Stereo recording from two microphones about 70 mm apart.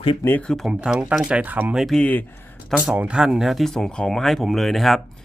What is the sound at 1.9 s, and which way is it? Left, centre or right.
Speech, centre.